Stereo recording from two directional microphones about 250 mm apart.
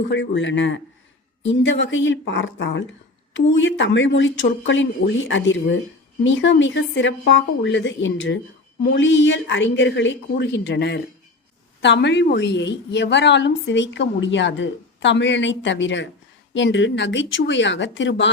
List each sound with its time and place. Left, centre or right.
0.1 s a woman's voice: left